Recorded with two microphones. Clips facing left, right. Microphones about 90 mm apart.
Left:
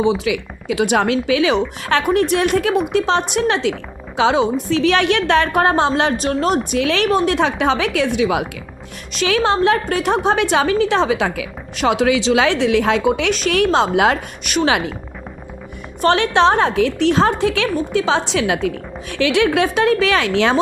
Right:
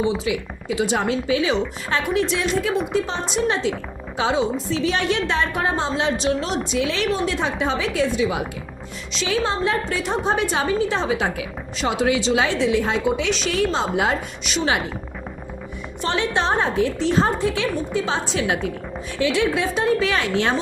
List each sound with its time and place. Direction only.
0.0 s a woman's voice: 80° left
2.0 s a woman's voice: 55° left (ahead or behind)
13.6 s a woman's voice: 70° left (ahead or behind)
16.0 s a woman's voice: 65° left (ahead or behind); by 18.7 s 90° left
19.2 s a woman's voice: 70° left (ahead or behind); by 20.6 s 90° left